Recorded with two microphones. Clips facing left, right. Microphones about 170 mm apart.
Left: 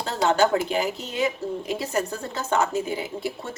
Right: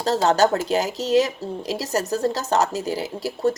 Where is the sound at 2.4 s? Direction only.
40° right (ahead or behind).